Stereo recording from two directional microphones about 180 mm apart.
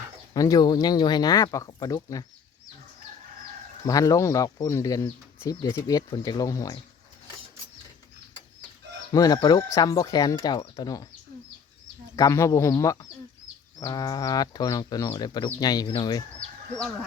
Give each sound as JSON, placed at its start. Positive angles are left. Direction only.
{"t": 0.3, "sound": "speech", "side_deg": 20}
{"t": 3.8, "sound": "speech", "side_deg": 20}
{"t": 9.1, "sound": "speech", "side_deg": 20}
{"t": 12.1, "sound": "speech", "side_deg": 20}